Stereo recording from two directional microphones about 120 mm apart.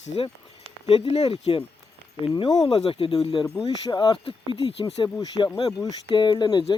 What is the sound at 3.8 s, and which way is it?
Speech, 35° left (ahead or behind).